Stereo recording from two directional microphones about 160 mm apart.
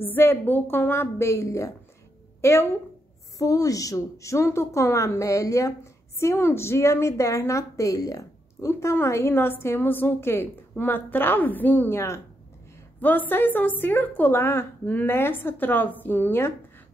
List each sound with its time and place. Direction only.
0.0 s a woman's voice: 15° left (ahead or behind)